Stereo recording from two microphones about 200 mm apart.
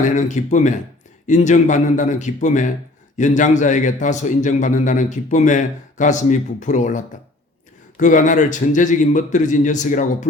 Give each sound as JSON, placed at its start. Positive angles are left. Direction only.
{"t": 0.0, "sound": "a man's voice", "side_deg": 40}